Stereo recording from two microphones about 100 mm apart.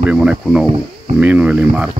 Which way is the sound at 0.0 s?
10° right (ahead or behind).